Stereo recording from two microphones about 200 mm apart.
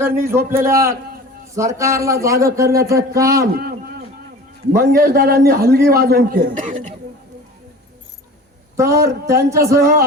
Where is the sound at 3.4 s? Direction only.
50° right (ahead or behind).